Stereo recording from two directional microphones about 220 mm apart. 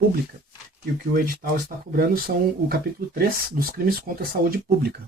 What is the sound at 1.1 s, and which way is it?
Speech, 40° right (ahead or behind).